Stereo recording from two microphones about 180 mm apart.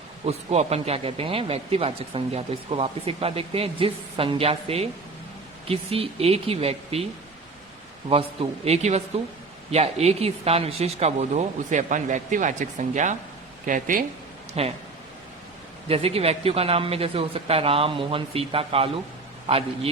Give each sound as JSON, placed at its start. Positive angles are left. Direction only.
{"t": 0.3, "sound": "speech", "side_deg": -35}
{"t": 8.1, "sound": "speech", "side_deg": -35}
{"t": 14.6, "sound": "speech", "side_deg": -35}
{"t": 15.9, "sound": "speech", "side_deg": -35}